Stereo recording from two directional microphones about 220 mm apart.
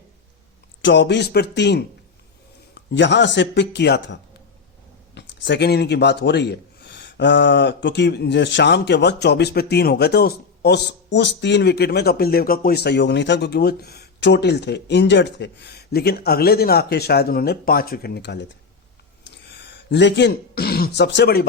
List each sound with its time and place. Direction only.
0.8 s speech: 55° left (ahead or behind)
19.2 s throat clearing: 50° left (ahead or behind)